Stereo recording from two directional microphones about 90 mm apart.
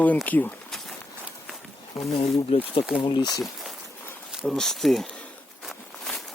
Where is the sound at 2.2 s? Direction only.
90° left.